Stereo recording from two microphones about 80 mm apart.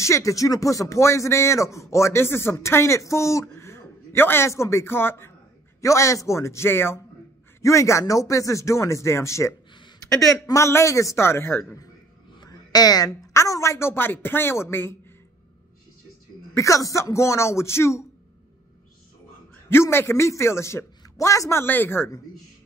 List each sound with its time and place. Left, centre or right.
0.0 s a man's voice: left
5.8 s speech: left
7.6 s speech: left
12.4 s a sound: left
13.3 s speech: left
16.5 s speech: left
19.7 s speech: left